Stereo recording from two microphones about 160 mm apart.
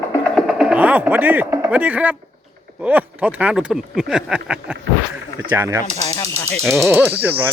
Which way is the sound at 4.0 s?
5° right (ahead or behind).